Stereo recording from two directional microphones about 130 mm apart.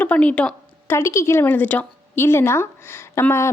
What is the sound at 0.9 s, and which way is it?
A woman's voice, 20° left (ahead or behind).